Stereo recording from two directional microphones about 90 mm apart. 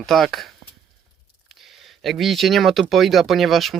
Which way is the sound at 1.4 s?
Centre (ahead or behind).